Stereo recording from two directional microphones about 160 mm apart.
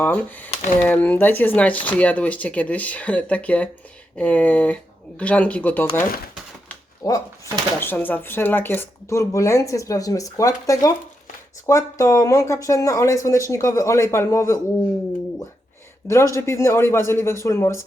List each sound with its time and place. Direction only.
0.0 s speech: 10° left (ahead or behind)
16.0 s speech: 20° left (ahead or behind)